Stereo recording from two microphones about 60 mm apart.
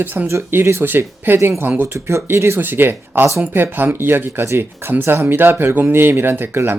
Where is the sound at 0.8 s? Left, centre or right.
Right.